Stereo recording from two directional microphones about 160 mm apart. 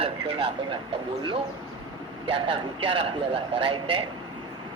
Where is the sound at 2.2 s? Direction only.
30° right (ahead or behind).